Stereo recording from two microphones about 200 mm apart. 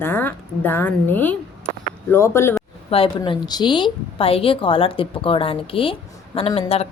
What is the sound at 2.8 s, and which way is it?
A woman's voice, 25° left (ahead or behind).